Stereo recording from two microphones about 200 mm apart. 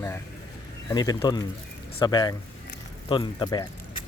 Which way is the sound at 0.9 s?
20° left (ahead or behind).